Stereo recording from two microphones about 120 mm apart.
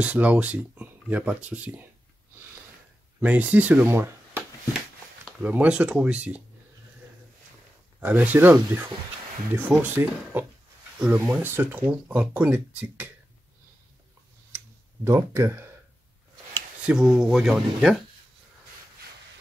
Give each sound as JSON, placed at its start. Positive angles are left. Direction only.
{"t": 0.0, "sound": "speech", "side_deg": -10}
{"t": 3.2, "sound": "speech", "side_deg": -15}
{"t": 5.4, "sound": "speech", "side_deg": -10}
{"t": 8.0, "sound": "speech", "side_deg": -10}
{"t": 15.0, "sound": "speech", "side_deg": -25}
{"t": 16.8, "sound": "speech", "side_deg": -5}